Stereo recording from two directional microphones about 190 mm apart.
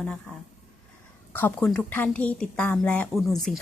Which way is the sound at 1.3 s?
10° left (ahead or behind).